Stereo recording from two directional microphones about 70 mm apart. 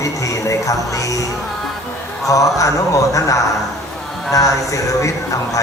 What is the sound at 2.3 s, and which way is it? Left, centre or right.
A man's voice, left.